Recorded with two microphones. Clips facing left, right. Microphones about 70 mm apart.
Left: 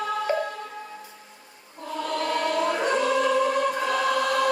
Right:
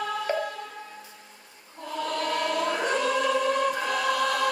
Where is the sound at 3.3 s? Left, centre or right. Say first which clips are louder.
Left 2 dB; centre.